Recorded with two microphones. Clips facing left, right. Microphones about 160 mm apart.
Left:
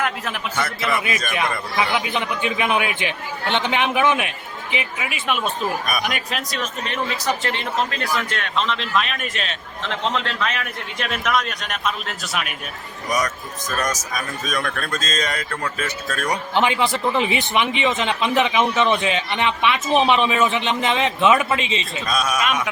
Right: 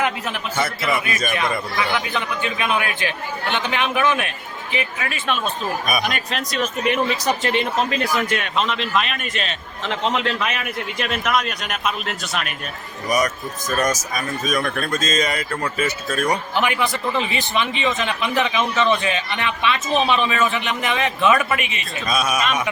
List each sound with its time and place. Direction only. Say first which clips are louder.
1.7 s speech: left 1 dB; 20° left (ahead or behind); by 6.7 s centre (ahead or behind)
6.8 s speech: right 4 dB; 15° right (ahead or behind)
10.1 s speech: right 2 dB; 10° right (ahead or behind); by 12.5 s 5° left (ahead or behind)
13.1 s speech: right 3 dB; 10° right (ahead or behind)
16.6 s speech: left 2 dB; 25° left (ahead or behind)
22.0 s speech: right 3 dB; 5° right (ahead or behind)